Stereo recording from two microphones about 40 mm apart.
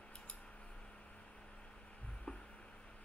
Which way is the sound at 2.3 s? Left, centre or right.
Centre.